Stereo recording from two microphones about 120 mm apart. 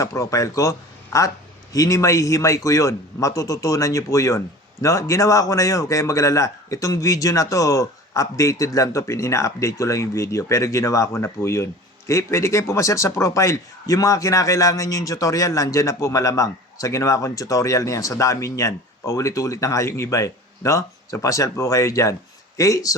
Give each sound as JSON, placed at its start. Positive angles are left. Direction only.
{"t": 0.0, "sound": "speech", "side_deg": 25}